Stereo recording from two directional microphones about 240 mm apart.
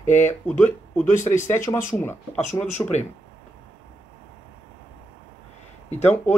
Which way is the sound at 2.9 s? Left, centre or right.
Left.